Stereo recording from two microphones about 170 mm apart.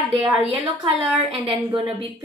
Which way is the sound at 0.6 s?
30° right (ahead or behind).